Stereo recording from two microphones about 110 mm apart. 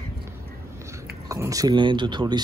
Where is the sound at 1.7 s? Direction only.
45° right (ahead or behind).